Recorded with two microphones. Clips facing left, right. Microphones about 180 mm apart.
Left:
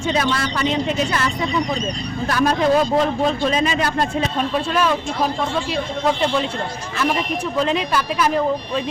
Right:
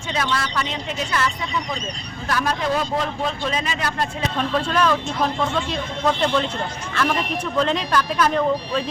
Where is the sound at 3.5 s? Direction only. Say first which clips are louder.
Left 6 dB; 20° left (ahead or behind).